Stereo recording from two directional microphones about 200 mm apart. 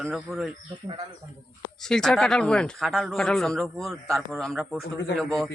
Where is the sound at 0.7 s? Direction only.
25° right (ahead or behind).